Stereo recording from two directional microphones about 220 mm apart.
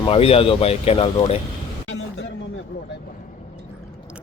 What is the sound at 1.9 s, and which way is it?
Music, 65° left (ahead or behind).